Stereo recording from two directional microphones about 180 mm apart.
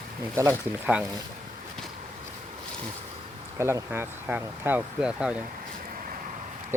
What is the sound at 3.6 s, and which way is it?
Speech, 15° right (ahead or behind).